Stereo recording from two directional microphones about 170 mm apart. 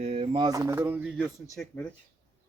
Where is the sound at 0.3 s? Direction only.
20° right (ahead or behind).